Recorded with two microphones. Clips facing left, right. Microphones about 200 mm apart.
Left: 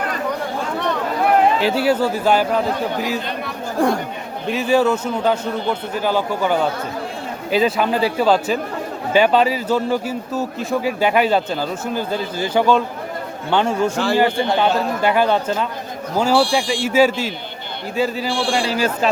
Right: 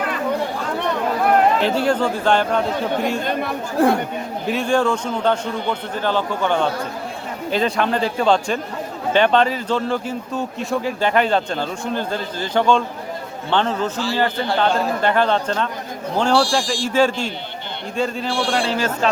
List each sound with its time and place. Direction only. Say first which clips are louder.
1.6 s a man's voice: left 1 dB; 5° left (ahead or behind)
14.3 s a man's voice: left 3 dB; 20° left (ahead or behind)
14.6 s a man's voice: right 2 dB; 10° left (ahead or behind)